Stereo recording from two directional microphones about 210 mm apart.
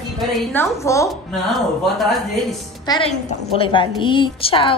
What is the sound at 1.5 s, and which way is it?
Speech, centre (ahead or behind).